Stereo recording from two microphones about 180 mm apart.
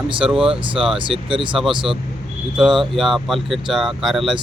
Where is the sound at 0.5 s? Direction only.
30° right (ahead or behind).